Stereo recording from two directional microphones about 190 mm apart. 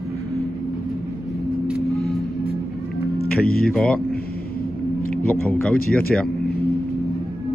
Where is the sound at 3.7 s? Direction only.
5° left (ahead or behind).